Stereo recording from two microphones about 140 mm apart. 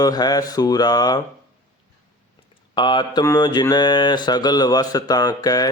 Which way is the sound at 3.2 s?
30° left (ahead or behind).